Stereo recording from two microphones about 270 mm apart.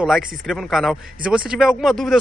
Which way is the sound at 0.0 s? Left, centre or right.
Centre.